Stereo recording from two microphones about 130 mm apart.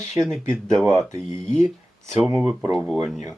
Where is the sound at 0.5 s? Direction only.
5° left (ahead or behind).